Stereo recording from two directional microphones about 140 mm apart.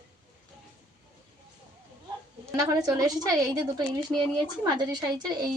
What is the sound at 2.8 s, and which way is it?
A woman's voice, 25° right (ahead or behind).